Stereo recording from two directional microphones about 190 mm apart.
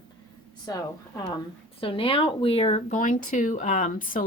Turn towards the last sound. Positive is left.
turn(degrees=45)  # may be behind; listen again after turning